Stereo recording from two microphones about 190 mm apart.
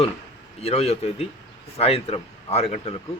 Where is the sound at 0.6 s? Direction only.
35° left (ahead or behind).